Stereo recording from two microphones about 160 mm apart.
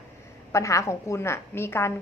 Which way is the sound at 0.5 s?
20° left (ahead or behind).